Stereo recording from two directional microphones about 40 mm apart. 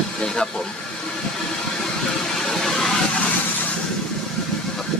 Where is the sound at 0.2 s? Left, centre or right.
Centre.